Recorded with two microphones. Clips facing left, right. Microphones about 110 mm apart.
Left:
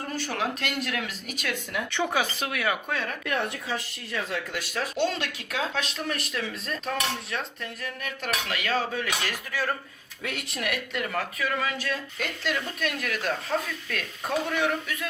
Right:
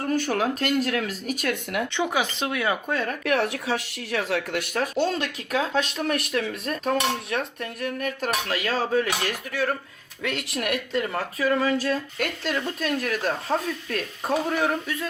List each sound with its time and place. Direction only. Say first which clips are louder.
0.1 s speech: right 6 dB; 45° right (ahead or behind)
1.9 s speech: left 1 dB; 15° right (ahead or behind)
2.9 s speech: right 4 dB; 40° right (ahead or behind)
3.2 s speech: right 7 dB; 80° right; by 5.9 s 40° right (ahead or behind)
6.1 s speech: right 6 dB; 60° right (ahead or behind); by 9.6 s 40° right (ahead or behind)
10.2 s speech: right 5 dB; 90° right
10.6 s speech: right 5 dB; 45° right (ahead or behind)
11.1 s speech: right 4 dB; 35° right (ahead or behind)